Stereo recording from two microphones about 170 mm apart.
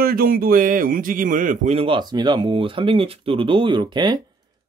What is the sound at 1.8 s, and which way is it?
Speech, 30° right (ahead or behind).